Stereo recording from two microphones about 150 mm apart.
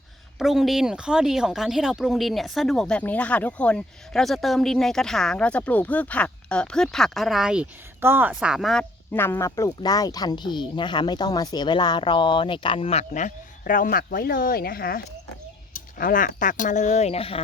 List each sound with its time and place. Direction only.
0.3 s speech: centre (ahead or behind)
9.1 s speech: 15° left (ahead or behind); by 15.0 s 85° left
15.7 s speech: 70° left (ahead or behind); by 17.4 s 40° left (ahead or behind)